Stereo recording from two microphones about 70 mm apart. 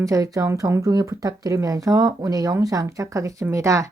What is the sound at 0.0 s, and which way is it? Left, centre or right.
Speech, right.